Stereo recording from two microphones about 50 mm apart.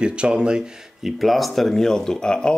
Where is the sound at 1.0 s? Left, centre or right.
Centre.